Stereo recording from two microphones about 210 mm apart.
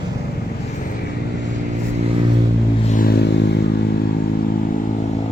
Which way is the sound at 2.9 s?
45° left (ahead or behind).